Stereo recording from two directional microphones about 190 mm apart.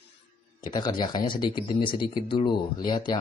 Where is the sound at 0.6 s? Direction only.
20° left (ahead or behind).